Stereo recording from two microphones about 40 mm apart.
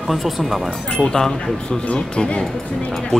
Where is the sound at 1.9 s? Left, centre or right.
Left.